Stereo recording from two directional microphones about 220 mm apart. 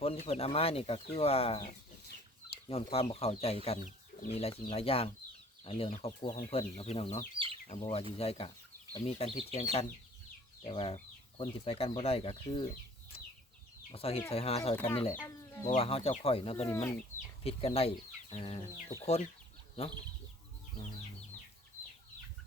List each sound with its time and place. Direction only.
0.0 s speech: 25° left (ahead or behind)
7.3 s chicken: 25° right (ahead or behind)
7.7 s speech: 25° left (ahead or behind)
10.7 s speech: 25° left (ahead or behind)
13.9 s speech: 25° left (ahead or behind)
15.1 s speech: 10° left (ahead or behind)
15.7 s speech: 25° left (ahead or behind)
16.6 s speech: 15° left (ahead or behind)
17.2 s speech: 30° left (ahead or behind)